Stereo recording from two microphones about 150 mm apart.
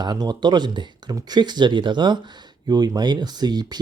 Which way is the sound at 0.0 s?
25° right (ahead or behind).